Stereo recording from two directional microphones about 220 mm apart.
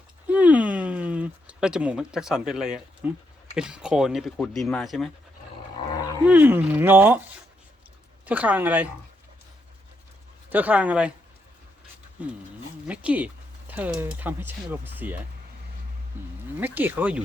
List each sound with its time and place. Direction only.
0.3 s a sound: 5° right (ahead or behind)
3.5 s speech: 5° right (ahead or behind)
5.9 s dog: 15° left (ahead or behind)
6.2 s speech: 5° right (ahead or behind)
8.3 s speech: 5° right (ahead or behind)
10.5 s speech: 5° right (ahead or behind)
12.9 s speech: 5° right (ahead or behind)